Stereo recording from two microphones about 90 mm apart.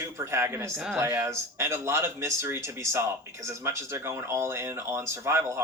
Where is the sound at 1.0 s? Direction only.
25° right (ahead or behind).